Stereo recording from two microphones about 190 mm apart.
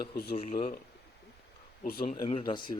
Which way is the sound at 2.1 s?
25° left (ahead or behind).